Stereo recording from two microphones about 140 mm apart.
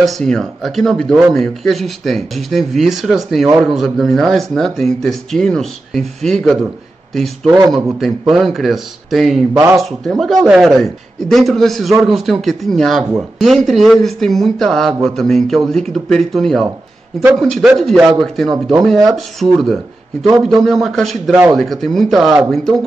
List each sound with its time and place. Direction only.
0.0 s speech: 5° left (ahead or behind)
7.4 s speech: 25° right (ahead or behind)
8.0 s speech: centre (ahead or behind)